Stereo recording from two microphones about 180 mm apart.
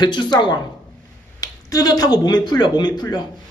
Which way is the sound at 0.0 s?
25° left (ahead or behind).